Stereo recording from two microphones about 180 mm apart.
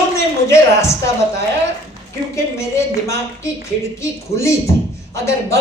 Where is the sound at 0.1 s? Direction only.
15° left (ahead or behind).